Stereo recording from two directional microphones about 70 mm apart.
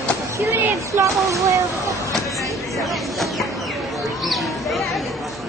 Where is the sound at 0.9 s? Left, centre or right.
Right.